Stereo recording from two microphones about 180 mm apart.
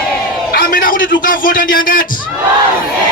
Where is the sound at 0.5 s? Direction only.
50° left (ahead or behind).